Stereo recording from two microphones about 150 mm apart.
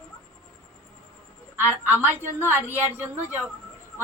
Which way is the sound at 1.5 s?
15° right (ahead or behind).